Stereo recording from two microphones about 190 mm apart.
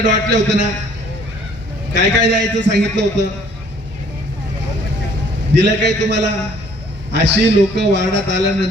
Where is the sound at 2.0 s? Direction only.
65° right (ahead or behind).